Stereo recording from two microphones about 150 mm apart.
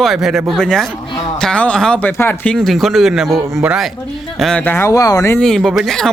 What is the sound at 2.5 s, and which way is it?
Speech, centre (ahead or behind).